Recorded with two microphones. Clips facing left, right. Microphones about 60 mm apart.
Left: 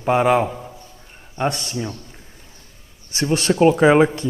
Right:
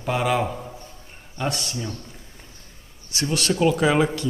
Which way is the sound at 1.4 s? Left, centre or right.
Left.